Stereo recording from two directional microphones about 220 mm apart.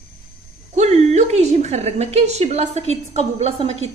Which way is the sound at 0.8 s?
30° right (ahead or behind).